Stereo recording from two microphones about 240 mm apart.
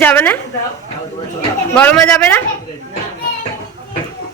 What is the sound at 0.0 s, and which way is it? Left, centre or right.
Speech, centre.